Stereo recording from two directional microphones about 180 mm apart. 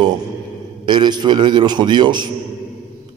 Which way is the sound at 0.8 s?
25° right (ahead or behind).